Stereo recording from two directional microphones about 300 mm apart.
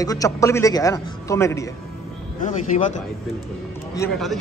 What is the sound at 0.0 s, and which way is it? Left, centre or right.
A man's voice, centre.